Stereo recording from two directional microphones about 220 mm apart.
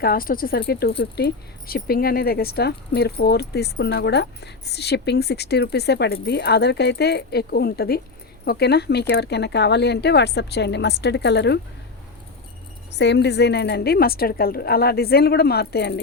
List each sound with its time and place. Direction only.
0.0 s speech: 40° left (ahead or behind)
12.9 s speech: 50° left (ahead or behind)